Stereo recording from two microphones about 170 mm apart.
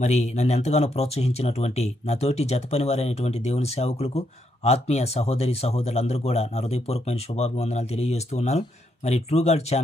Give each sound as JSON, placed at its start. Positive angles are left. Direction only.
{"t": 0.0, "sound": "speech", "side_deg": 40}